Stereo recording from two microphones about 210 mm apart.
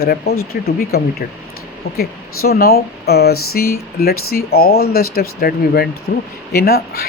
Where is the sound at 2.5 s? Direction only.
45° left (ahead or behind).